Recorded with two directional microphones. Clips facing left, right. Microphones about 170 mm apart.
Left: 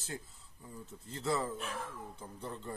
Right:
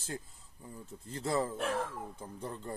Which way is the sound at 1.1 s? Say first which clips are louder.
Right 2 dB; 45° right (ahead or behind).